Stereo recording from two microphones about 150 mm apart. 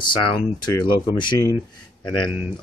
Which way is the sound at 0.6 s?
30° left (ahead or behind).